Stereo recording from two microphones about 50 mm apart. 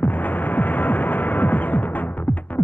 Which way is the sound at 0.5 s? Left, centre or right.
Left.